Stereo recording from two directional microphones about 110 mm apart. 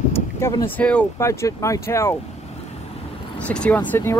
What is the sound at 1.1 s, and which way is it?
Speech, 25° left (ahead or behind).